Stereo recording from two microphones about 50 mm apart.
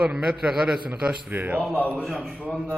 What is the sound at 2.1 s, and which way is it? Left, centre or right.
Speech, right.